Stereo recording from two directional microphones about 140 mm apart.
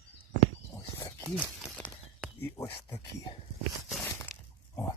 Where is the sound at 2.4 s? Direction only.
15° left (ahead or behind).